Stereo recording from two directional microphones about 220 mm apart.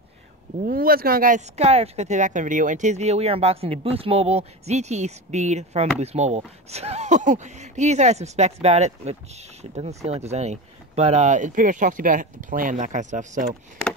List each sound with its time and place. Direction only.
0.7 s speech: 40° right (ahead or behind)